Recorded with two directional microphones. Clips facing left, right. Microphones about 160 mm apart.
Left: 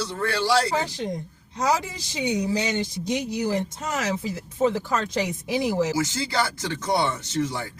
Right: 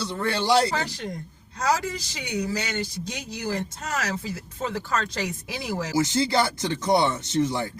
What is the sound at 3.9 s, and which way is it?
Speech, 15° left (ahead or behind).